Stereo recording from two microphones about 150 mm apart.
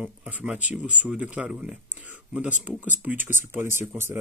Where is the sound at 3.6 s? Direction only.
55° left (ahead or behind).